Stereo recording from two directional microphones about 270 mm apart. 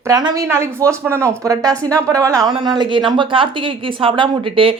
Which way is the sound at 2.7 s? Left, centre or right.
Centre.